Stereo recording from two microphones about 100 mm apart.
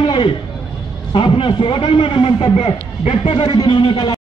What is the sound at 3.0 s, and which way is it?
Speech, 65° left (ahead or behind).